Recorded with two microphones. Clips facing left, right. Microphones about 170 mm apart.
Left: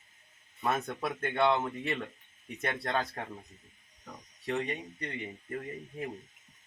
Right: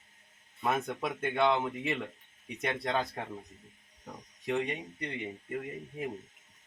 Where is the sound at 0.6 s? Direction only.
10° right (ahead or behind).